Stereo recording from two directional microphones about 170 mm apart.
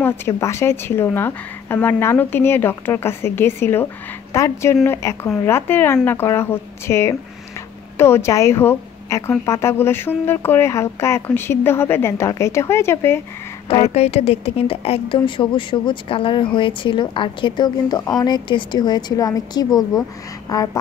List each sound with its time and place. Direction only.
0.0 s a woman's voice: 15° left (ahead or behind)
13.8 s a woman's voice: 40° left (ahead or behind); by 20.0 s 20° left (ahead or behind)
20.4 s duck: 20° left (ahead or behind)